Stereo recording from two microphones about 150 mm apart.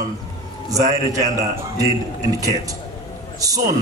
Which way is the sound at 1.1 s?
25° right (ahead or behind).